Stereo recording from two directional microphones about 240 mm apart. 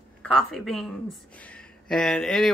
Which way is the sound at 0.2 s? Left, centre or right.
Centre.